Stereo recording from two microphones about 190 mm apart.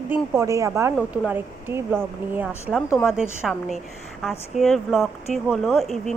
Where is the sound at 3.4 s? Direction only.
Centre (ahead or behind).